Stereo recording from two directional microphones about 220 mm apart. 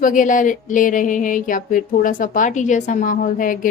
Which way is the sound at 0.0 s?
35° left (ahead or behind).